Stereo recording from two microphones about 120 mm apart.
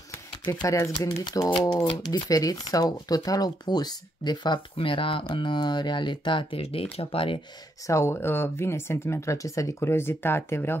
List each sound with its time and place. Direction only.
0.1 s a sound: 25° left (ahead or behind)
1.0 s speech: 30° left (ahead or behind); by 7.3 s 50° left (ahead or behind)
7.8 s speech: 25° left (ahead or behind)